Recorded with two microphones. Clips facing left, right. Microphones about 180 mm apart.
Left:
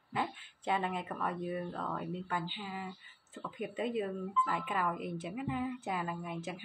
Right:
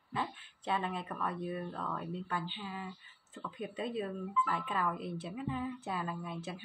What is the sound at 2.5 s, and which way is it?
Speech, 15° left (ahead or behind).